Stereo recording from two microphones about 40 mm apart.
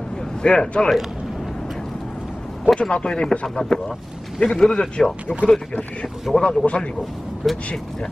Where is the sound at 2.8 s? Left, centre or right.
Left.